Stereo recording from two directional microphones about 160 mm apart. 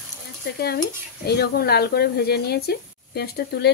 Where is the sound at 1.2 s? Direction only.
80° left.